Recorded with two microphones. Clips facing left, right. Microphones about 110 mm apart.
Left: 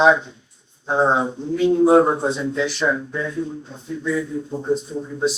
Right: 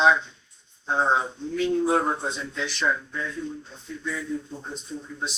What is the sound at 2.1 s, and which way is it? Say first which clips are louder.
Speech: left 8 dB; 20° left (ahead or behind).